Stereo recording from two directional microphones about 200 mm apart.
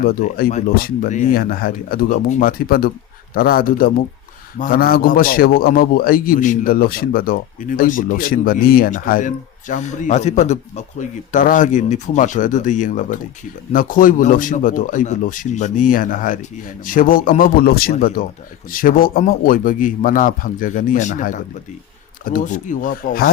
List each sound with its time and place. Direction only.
0.0 s a man's voice: 45° left (ahead or behind)